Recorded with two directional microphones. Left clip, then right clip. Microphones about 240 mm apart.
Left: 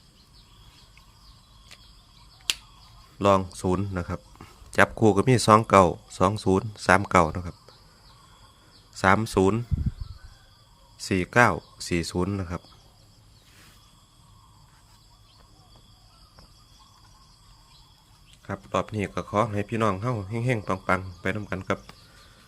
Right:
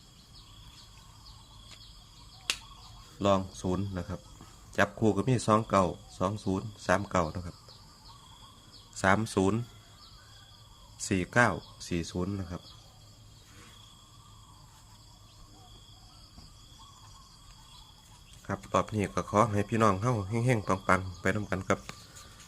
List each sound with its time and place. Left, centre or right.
3.2 s speech: left
9.0 s speech: left
10.9 s speech: left
18.4 s speech: centre